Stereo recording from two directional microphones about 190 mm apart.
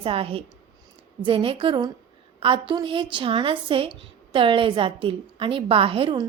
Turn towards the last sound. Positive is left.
turn(degrees=-25)  # may be behind; listen again after turning